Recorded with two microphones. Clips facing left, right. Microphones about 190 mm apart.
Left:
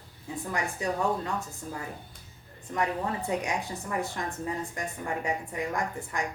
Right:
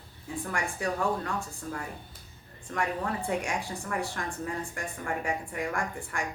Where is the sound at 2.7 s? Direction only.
20° left (ahead or behind).